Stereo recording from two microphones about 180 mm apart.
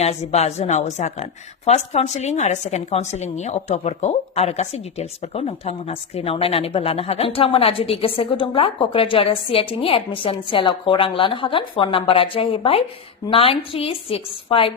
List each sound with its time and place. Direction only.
0.0 s a woman's voice: 35° left (ahead or behind)